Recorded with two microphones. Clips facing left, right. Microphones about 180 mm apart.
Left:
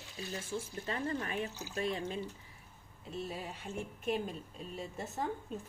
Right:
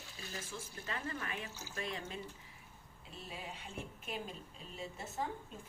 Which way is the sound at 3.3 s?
40° left (ahead or behind).